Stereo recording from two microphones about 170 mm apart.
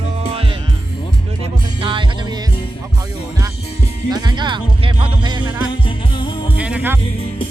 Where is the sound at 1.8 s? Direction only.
30° right (ahead or behind).